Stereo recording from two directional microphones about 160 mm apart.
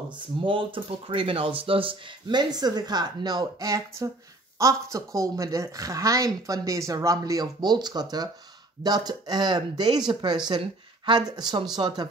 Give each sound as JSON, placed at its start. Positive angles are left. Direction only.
{"t": 0.4, "sound": "speech", "side_deg": -30}